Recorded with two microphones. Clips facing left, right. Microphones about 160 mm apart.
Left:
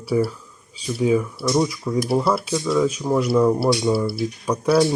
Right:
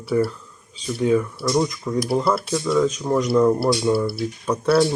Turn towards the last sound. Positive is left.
turn(degrees=10)  # may be behind; listen again after turning